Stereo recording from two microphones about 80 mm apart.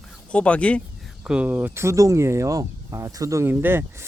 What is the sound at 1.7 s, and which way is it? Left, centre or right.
Speech, right.